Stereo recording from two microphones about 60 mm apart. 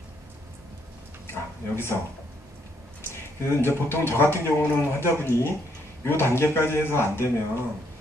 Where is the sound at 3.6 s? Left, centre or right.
Left.